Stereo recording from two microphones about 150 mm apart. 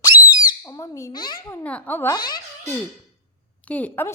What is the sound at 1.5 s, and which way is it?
Speech, 10° left (ahead or behind).